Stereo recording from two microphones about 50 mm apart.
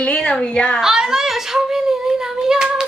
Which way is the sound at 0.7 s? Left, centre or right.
Centre.